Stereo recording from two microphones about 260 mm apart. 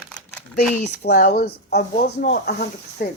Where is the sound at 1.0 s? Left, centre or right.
Left.